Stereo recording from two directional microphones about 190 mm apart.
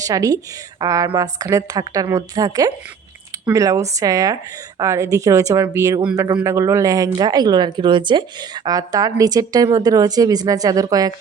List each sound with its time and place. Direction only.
0.0 s a woman's voice: 20° right (ahead or behind)